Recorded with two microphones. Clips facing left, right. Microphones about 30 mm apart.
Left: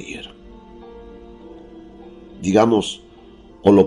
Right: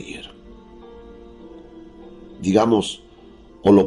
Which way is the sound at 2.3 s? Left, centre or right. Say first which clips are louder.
Left 2 dB; left.